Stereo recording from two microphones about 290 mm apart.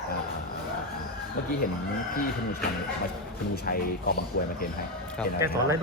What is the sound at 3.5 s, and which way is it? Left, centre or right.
Speech, left.